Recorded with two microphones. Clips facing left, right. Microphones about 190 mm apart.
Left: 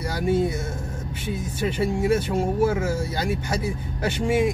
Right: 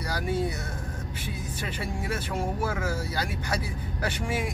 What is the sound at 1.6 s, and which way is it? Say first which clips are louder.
Speech: left 12 dB; 25° left (ahead or behind).